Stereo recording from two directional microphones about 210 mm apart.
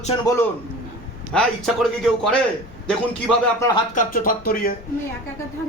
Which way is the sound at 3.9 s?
45° left (ahead or behind).